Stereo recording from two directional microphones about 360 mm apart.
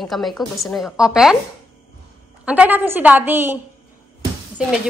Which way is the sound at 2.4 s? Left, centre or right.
Centre.